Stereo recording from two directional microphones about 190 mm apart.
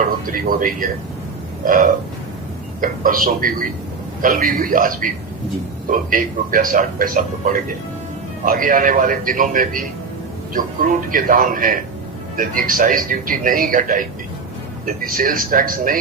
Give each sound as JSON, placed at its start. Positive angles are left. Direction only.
{"t": 0.0, "sound": "a man's voice", "side_deg": -45}